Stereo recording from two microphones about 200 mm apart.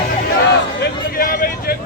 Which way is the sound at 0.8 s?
50° left (ahead or behind).